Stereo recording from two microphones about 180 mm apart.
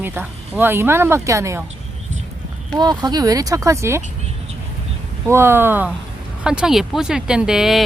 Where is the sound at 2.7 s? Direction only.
25° right (ahead or behind).